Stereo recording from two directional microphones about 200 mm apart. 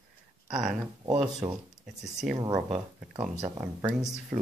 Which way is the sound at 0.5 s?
5° right (ahead or behind).